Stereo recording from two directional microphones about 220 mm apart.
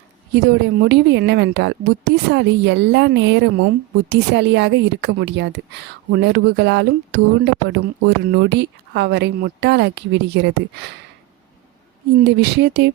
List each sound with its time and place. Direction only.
0.3 s a woman's voice: 50° right (ahead or behind)
12.2 s a woman's voice: 50° right (ahead or behind)